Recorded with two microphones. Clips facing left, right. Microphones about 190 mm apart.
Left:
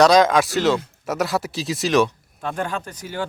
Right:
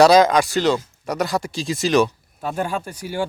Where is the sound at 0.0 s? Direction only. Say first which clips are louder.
Right 2 dB; 5° right (ahead or behind).